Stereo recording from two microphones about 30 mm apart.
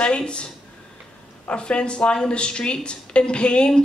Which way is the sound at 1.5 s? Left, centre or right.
Left.